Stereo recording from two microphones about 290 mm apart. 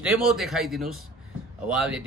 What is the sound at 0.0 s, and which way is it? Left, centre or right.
A man's voice, centre.